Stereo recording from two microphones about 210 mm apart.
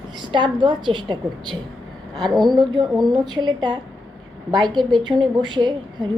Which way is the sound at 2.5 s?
20° right (ahead or behind).